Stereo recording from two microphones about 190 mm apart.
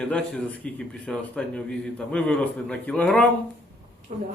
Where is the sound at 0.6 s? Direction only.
5° left (ahead or behind).